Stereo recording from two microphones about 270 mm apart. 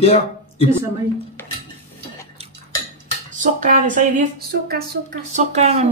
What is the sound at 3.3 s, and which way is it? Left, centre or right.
Speech, right.